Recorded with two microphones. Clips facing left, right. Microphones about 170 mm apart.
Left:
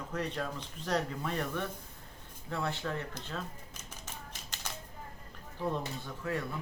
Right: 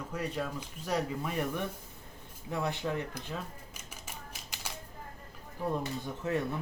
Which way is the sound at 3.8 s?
10° right (ahead or behind).